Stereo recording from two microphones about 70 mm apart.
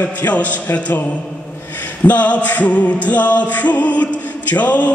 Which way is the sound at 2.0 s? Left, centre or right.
Left.